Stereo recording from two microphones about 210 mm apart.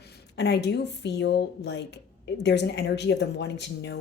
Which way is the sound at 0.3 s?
55° left (ahead or behind).